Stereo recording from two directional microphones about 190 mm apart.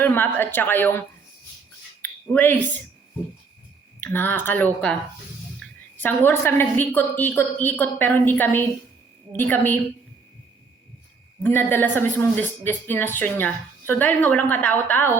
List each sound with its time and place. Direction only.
0.0 s a woman's voice: 10° left (ahead or behind)
2.0 s a sound: 10° left (ahead or behind)
4.0 s a woman's voice: 10° left (ahead or behind)
5.6 s a sound: centre (ahead or behind)
6.0 s a woman's voice: 10° left (ahead or behind)
11.4 s a woman's voice: 10° left (ahead or behind)